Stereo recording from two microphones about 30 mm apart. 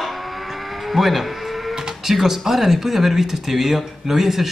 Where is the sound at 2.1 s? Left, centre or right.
Centre.